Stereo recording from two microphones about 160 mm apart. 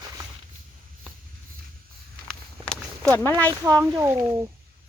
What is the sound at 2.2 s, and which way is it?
Walk, 5° left (ahead or behind).